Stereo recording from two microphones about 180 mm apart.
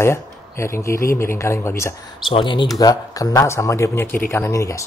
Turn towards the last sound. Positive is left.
turn(degrees=15)  # may be behind; listen again after turning